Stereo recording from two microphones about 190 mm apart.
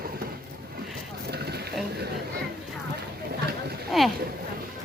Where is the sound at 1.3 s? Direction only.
55° right (ahead or behind).